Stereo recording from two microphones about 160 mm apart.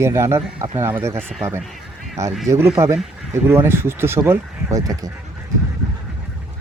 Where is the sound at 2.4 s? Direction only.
15° right (ahead or behind).